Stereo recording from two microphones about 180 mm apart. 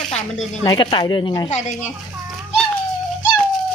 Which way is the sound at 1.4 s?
40° left (ahead or behind).